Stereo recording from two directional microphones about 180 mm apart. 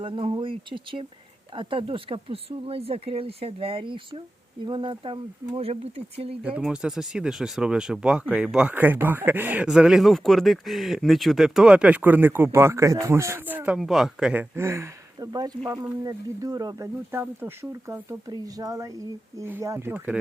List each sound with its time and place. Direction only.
0.0 s speech: 30° right (ahead or behind)
6.6 s speech: 5° right (ahead or behind)